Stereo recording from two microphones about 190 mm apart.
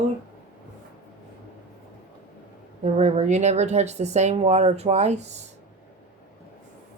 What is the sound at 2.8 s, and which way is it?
Speech, 35° right (ahead or behind).